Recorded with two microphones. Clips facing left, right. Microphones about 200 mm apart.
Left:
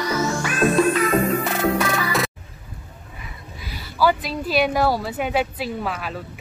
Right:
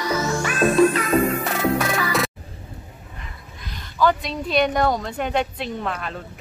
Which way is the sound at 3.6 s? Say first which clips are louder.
Even; 5° left (ahead or behind).